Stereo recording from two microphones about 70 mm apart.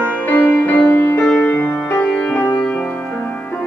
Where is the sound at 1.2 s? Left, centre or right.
Centre.